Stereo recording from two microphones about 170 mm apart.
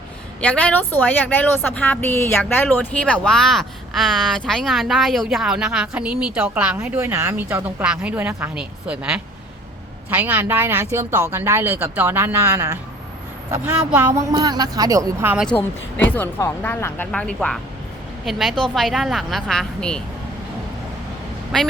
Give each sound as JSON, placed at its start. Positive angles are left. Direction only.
{"t": 0.4, "sound": "a woman's voice", "side_deg": 5}
{"t": 16.0, "sound": "a woman's voice", "side_deg": 10}